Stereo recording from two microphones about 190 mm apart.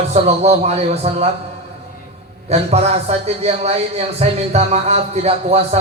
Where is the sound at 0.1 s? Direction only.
35° right (ahead or behind).